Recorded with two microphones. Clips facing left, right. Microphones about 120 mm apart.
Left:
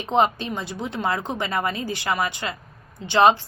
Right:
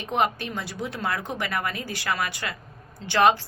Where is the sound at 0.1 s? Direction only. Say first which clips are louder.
Left 4 dB; 25° left (ahead or behind).